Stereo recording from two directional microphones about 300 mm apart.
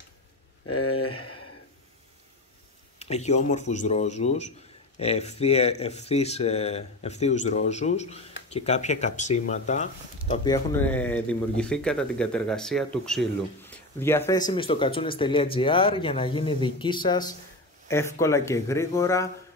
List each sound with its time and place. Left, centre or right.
0.7 s speech: left
1.1 s a sound: left
3.0 s speech: left
10.3 s speech: centre